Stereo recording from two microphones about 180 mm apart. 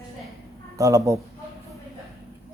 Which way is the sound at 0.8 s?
20° right (ahead or behind).